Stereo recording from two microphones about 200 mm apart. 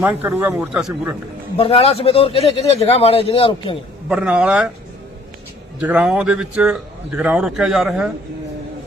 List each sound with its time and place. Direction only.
0.0 s speech: 10° right (ahead or behind)
1.5 s speech: 30° left (ahead or behind)
4.1 s speech: 5° right (ahead or behind)
5.8 s speech: 5° right (ahead or behind)